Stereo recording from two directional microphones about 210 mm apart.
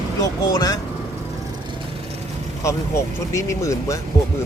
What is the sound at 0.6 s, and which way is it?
Speech, 15° left (ahead or behind).